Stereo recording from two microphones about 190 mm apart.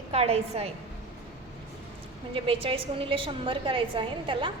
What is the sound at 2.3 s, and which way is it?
A woman's voice, 30° right (ahead or behind).